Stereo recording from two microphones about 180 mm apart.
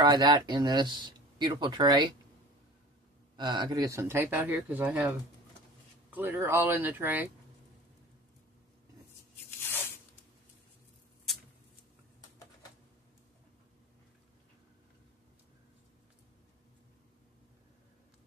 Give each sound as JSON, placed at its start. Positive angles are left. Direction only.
{"t": 0.0, "sound": "speech", "side_deg": -25}
{"t": 3.3, "sound": "speech", "side_deg": -25}
{"t": 9.6, "sound": "tearing", "side_deg": 10}